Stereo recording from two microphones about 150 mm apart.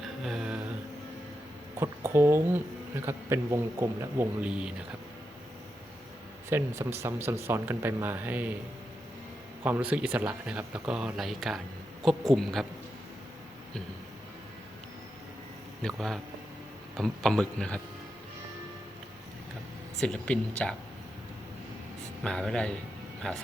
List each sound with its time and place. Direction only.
0.3 s a sound: 5° right (ahead or behind)
1.8 s speech: 15° right (ahead or behind)
6.5 s speech: 15° right (ahead or behind)
9.6 s a man's voice: 10° right (ahead or behind)
15.8 s a man's voice: 5° left (ahead or behind)
20.0 s speech: 10° left (ahead or behind)
22.2 s a man's voice: 5° left (ahead or behind)